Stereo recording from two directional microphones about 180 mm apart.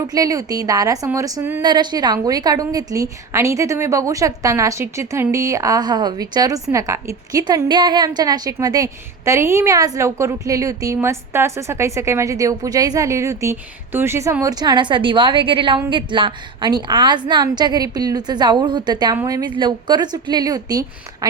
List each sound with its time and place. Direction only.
0.0 s a woman's voice: 20° right (ahead or behind)